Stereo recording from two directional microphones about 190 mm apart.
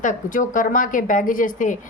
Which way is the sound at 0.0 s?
45° left (ahead or behind).